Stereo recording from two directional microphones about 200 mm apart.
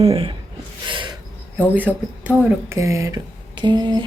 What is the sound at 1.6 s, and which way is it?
Speech, 10° right (ahead or behind).